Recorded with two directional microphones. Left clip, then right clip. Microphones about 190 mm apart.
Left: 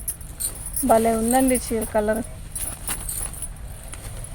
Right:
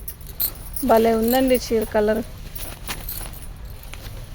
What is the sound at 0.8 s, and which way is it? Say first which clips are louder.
Speech: right 2 dB; 45° right (ahead or behind).